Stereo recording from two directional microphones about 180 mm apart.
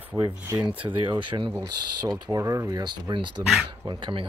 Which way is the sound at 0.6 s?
10° right (ahead or behind).